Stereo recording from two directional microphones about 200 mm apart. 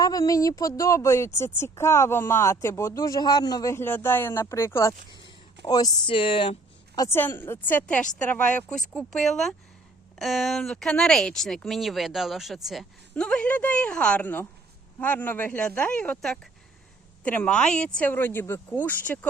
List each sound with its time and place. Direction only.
0.0 s a woman's voice: 20° left (ahead or behind)